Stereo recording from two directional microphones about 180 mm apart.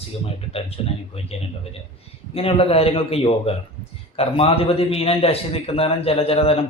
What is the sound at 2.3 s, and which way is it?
A man's voice, 30° left (ahead or behind).